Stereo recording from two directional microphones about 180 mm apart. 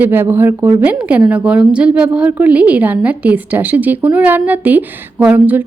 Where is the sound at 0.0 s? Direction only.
10° right (ahead or behind).